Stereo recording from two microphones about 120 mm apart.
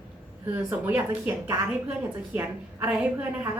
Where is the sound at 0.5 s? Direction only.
15° right (ahead or behind).